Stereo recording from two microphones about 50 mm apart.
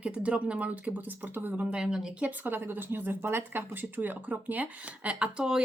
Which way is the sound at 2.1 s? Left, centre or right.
Right.